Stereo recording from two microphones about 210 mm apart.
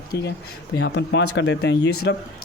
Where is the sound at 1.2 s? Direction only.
65° left (ahead or behind).